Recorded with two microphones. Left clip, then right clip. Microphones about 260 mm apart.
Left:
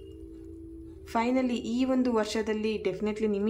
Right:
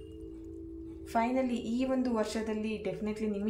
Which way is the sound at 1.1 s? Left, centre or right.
Centre.